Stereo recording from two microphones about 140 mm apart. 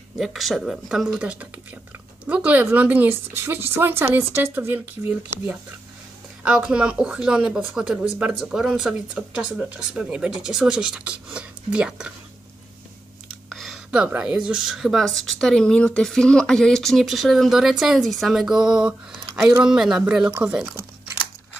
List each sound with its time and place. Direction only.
0.2 s speech: centre (ahead or behind)
13.5 s a sound: centre (ahead or behind)
14.0 s speech: 10° right (ahead or behind)